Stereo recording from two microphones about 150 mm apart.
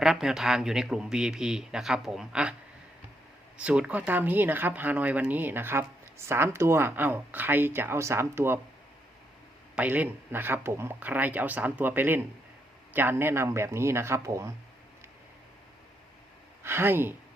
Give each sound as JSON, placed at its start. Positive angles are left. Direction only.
{"t": 0.0, "sound": "speech", "side_deg": -5}
{"t": 3.6, "sound": "speech", "side_deg": -5}
{"t": 9.7, "sound": "speech", "side_deg": -10}
{"t": 16.6, "sound": "speech", "side_deg": -15}